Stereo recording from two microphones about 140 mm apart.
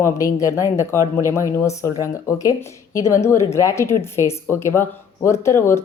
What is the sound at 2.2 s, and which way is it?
Speech, 25° left (ahead or behind).